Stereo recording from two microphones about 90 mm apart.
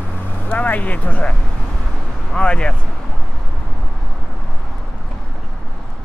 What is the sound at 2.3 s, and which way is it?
Speech, 10° left (ahead or behind).